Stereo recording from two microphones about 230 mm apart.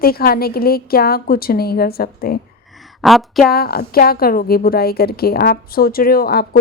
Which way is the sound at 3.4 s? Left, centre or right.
Left.